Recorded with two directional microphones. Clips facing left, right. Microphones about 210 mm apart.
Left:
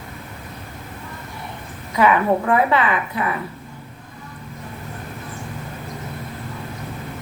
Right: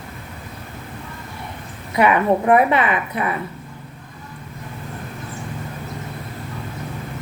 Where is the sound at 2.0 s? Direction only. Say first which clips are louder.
Right 1 dB; 20° right (ahead or behind).